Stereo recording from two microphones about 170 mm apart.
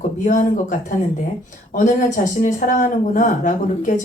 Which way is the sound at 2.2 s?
50° left (ahead or behind).